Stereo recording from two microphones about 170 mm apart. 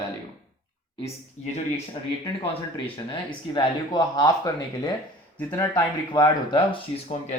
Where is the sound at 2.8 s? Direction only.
30° left (ahead or behind).